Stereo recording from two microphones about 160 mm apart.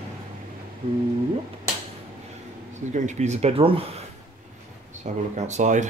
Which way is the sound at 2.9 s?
50° right (ahead or behind).